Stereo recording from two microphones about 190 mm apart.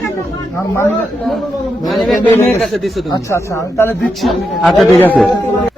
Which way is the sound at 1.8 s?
Centre (ahead or behind).